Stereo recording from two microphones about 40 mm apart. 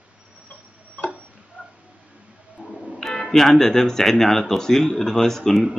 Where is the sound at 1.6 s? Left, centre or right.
Right.